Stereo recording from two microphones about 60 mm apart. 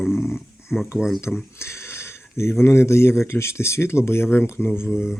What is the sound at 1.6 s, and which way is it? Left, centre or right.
Speech, left.